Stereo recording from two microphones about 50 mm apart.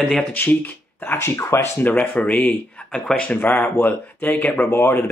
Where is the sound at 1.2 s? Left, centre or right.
Left.